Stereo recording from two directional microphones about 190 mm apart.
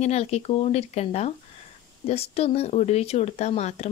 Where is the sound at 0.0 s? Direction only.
35° left (ahead or behind).